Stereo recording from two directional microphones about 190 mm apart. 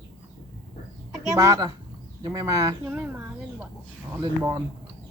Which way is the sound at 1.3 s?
20° right (ahead or behind).